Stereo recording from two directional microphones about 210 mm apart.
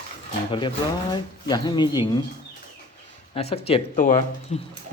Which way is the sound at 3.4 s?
30° left (ahead or behind).